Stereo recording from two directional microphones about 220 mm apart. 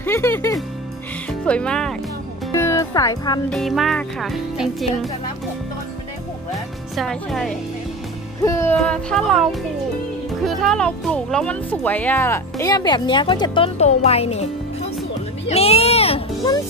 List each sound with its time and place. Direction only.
0.0 s music: 10° left (ahead or behind)
1.4 s speech: 5° left (ahead or behind)
3.4 s speech: centre (ahead or behind)
6.5 s speech: centre (ahead or behind)
8.4 s speech: 15° left (ahead or behind)
8.7 s a child's voice: centre (ahead or behind); by 16.6 s 20° left (ahead or behind)